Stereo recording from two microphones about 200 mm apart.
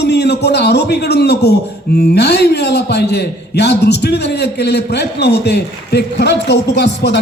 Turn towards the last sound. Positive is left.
turn(degrees=60)  # may be behind; listen again after turning